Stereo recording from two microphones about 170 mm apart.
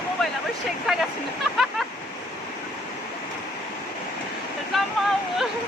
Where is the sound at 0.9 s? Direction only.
Centre (ahead or behind).